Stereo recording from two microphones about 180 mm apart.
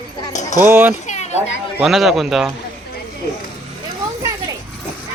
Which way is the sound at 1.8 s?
Centre (ahead or behind).